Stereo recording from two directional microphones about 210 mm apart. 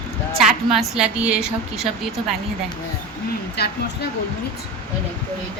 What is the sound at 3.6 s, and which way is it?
Speech, 50° left (ahead or behind).